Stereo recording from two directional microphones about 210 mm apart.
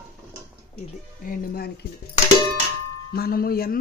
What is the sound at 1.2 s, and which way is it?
Speech, 40° left (ahead or behind).